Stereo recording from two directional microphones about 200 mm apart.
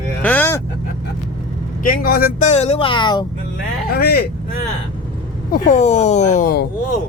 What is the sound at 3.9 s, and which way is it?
Speech, 50° left (ahead or behind).